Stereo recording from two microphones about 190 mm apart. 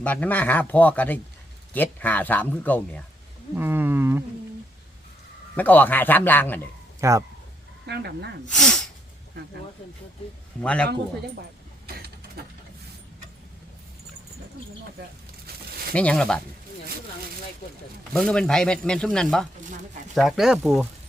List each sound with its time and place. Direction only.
0.0 s speech: 10° left (ahead or behind)
3.5 s roaring cats: 10° right (ahead or behind)
5.5 s speech: 10° left (ahead or behind)
7.0 s roaring cats: 15° right (ahead or behind)
7.9 s speech: 60° right (ahead or behind)
8.4 s snort: 5° left (ahead or behind)
10.6 s speech: 5° left (ahead or behind)
11.9 s a sound: 55° right (ahead or behind)
16.0 s speech: 5° left (ahead or behind)
18.1 s speech: 5° left (ahead or behind)